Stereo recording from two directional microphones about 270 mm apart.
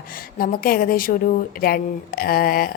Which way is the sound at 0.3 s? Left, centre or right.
Left.